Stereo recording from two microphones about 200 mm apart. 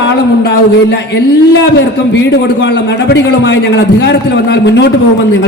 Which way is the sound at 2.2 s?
60° left (ahead or behind).